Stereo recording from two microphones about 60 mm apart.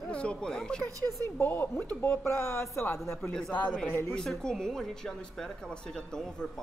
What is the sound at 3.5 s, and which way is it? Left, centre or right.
Speech, left.